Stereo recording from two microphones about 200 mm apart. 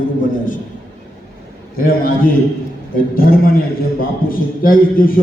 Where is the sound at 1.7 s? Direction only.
45° left (ahead or behind).